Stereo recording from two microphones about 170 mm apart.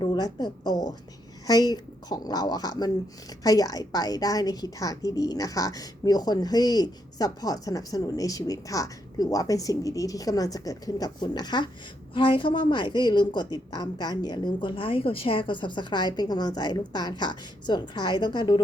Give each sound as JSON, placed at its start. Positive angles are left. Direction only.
{"t": 0.0, "sound": "speech", "side_deg": 25}